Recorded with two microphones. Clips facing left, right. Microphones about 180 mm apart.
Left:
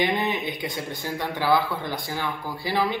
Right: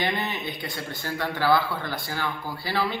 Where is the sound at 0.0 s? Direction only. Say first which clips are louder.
Left 4 dB; 20° left (ahead or behind).